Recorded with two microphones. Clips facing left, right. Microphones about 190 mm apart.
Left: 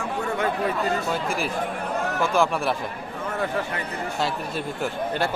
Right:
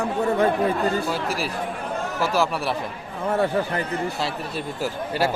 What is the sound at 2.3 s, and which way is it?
Speech, centre (ahead or behind).